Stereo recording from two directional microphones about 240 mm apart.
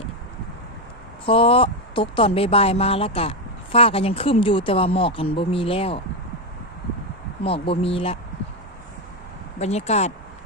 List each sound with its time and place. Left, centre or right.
1.2 s speech: left
7.4 s speech: left
9.6 s speech: left